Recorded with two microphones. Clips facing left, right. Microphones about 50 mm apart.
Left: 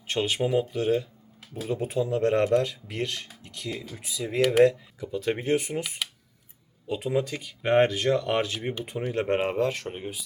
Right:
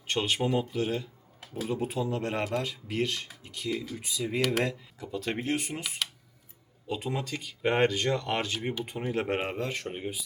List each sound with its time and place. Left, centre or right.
0.1 s speech: centre
4.4 s speech: centre